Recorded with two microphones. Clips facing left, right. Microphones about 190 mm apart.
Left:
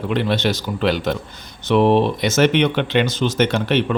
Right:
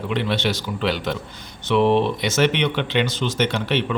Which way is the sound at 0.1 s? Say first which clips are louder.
Left 3 dB; 40° left (ahead or behind).